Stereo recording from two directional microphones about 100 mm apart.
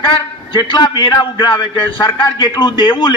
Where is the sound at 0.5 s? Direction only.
50° left (ahead or behind).